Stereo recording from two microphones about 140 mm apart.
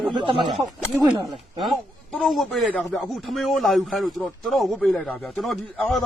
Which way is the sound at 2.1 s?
Centre (ahead or behind).